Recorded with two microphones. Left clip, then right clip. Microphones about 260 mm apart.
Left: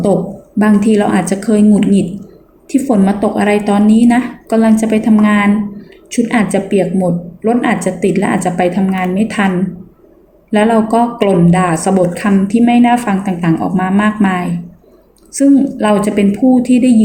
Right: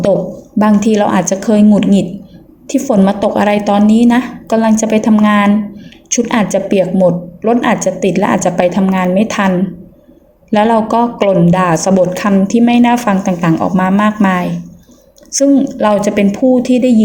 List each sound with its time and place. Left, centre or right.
0.6 s a woman's voice: right
10.5 s a woman's voice: right